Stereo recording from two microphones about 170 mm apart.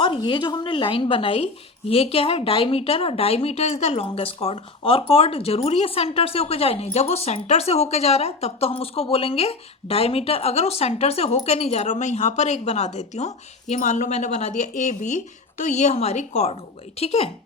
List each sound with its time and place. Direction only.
0.0 s a woman's voice: 30° left (ahead or behind)